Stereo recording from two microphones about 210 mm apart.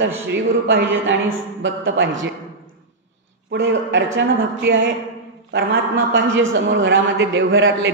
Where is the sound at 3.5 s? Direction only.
65° right (ahead or behind).